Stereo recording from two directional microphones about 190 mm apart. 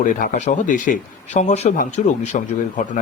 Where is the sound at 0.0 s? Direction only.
45° left (ahead or behind).